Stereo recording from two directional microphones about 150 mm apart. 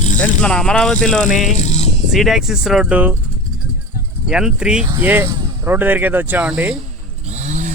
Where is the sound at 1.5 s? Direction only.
50° left (ahead or behind).